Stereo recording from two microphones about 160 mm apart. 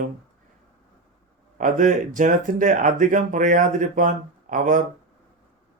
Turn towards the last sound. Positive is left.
turn(degrees=-55)  # may be behind; listen again after turning